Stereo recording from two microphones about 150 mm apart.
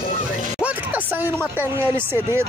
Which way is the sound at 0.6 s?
10° right (ahead or behind).